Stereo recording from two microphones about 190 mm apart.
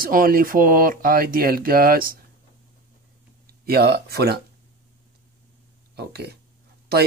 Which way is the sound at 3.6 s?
55° right (ahead or behind).